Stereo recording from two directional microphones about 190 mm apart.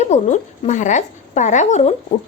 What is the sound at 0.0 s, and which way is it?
A woman's voice, 40° left (ahead or behind).